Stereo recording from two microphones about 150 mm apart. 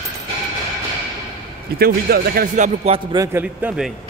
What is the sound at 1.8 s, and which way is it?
Speech, 90° right.